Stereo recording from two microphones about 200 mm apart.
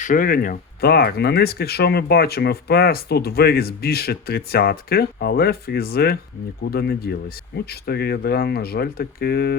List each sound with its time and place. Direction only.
0.0 s speech: 45° left (ahead or behind)